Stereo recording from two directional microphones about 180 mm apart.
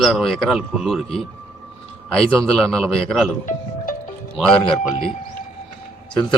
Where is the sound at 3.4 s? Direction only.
45° left (ahead or behind).